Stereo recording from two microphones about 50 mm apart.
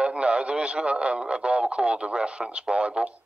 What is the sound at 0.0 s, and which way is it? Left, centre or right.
Speech, right.